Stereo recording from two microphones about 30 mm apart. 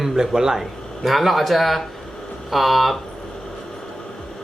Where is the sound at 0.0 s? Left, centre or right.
Right.